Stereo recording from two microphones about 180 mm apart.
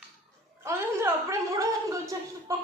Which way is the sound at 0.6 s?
15° right (ahead or behind).